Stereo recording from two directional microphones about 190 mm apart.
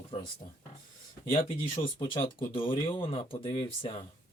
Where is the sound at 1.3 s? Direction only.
25° left (ahead or behind).